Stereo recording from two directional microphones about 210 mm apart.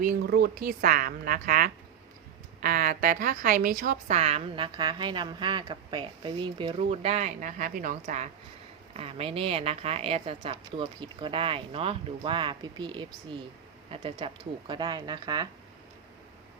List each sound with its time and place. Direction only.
0.0 s a woman's voice: 45° right (ahead or behind); by 15.4 s 20° right (ahead or behind)